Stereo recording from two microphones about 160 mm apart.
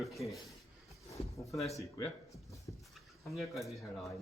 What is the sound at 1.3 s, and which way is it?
Speech, 20° left (ahead or behind).